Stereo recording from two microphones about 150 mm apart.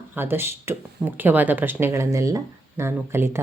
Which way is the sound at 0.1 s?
15° right (ahead or behind).